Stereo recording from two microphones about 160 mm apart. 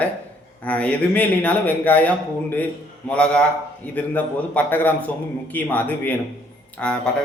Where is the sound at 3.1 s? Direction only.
5° left (ahead or behind).